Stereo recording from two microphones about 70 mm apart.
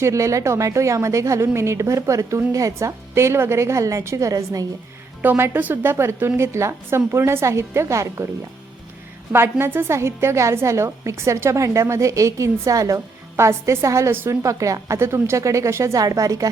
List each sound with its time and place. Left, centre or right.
0.0 s a woman's voice: right
4.3 s a woman's voice: right
5.2 s a woman's voice: right
9.3 s a woman's voice: right
16.0 s a woman's voice: right